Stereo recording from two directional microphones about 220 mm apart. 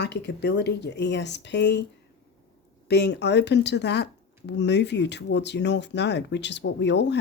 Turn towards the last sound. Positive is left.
turn(degrees=50)  # may be behind; listen again after turning